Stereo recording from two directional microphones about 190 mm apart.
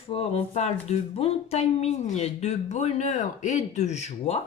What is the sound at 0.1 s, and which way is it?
Speech, 35° left (ahead or behind).